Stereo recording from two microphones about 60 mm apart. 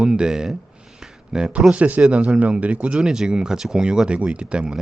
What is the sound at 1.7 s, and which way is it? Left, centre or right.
Speech, right.